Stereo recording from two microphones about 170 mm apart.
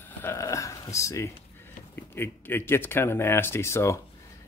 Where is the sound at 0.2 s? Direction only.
15° left (ahead or behind).